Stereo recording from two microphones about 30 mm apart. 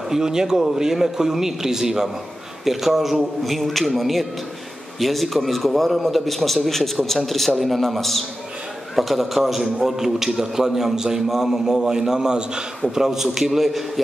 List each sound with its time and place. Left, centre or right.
0.1 s a man's voice: right
3.6 s a man's voice: centre; by 12.6 s right
12.9 s a man's voice: centre